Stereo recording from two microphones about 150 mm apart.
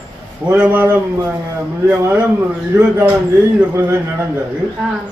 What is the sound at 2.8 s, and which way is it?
Speech, 10° right (ahead or behind).